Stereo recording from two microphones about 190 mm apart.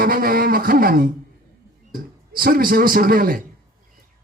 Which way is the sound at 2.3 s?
50° right (ahead or behind).